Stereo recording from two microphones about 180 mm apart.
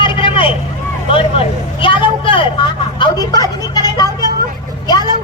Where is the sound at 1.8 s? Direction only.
25° left (ahead or behind).